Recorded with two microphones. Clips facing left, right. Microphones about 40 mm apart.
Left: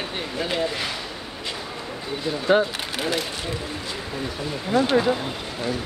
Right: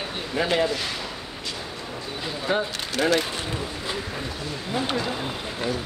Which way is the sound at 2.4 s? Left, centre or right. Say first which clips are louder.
Left 6 dB; centre.